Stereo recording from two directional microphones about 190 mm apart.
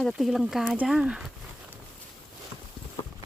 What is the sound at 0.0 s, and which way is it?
Speech, centre (ahead or behind).